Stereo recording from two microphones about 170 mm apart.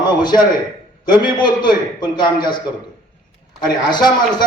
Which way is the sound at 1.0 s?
25° left (ahead or behind).